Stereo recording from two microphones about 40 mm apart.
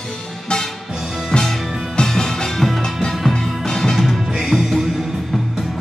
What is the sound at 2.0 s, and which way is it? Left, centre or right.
Music, centre.